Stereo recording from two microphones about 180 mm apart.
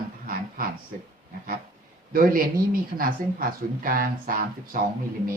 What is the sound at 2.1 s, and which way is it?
Speech, 50° right (ahead or behind).